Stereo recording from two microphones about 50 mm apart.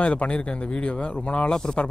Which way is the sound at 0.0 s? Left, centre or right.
Left.